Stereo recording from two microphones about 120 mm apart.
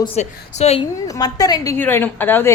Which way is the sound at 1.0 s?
30° left (ahead or behind).